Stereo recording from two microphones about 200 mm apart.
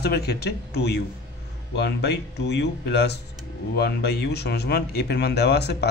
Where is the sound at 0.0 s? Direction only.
55° left (ahead or behind).